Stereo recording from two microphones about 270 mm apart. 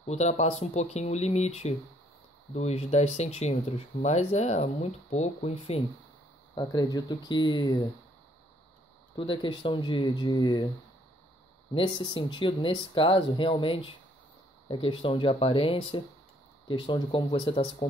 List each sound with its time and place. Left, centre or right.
0.0 s speech: left
9.1 s speech: centre
11.7 s speech: centre